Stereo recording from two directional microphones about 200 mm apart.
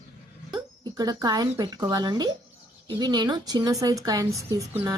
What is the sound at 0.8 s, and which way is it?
A woman's voice, 20° right (ahead or behind).